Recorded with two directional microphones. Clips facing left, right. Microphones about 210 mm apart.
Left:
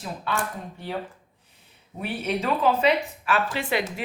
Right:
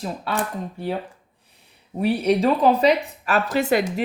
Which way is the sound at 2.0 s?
35° right (ahead or behind).